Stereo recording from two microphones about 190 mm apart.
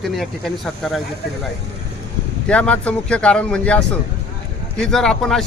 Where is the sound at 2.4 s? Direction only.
5° left (ahead or behind).